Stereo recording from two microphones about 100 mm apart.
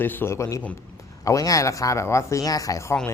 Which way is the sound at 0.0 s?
20° left (ahead or behind).